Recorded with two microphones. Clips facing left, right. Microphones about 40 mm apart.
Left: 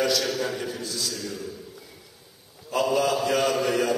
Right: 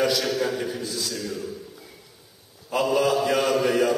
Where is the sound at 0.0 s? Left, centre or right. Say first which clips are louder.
Right 2 dB; centre.